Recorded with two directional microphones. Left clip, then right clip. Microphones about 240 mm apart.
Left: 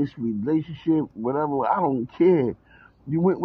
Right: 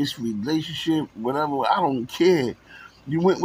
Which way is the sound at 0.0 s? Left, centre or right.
Centre.